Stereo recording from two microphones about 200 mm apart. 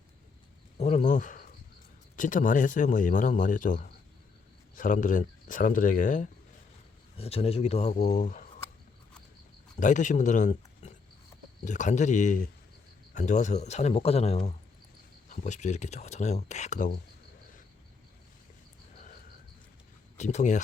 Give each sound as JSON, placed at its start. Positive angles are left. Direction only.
{"t": 0.8, "sound": "a man's voice", "side_deg": 35}
{"t": 7.2, "sound": "a man's voice", "side_deg": 30}
{"t": 9.8, "sound": "a man's voice", "side_deg": 40}
{"t": 20.1, "sound": "speech", "side_deg": 35}